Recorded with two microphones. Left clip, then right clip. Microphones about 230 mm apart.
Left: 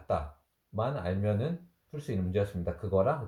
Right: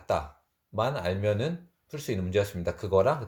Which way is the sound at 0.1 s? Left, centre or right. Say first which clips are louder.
Right 3 dB; right.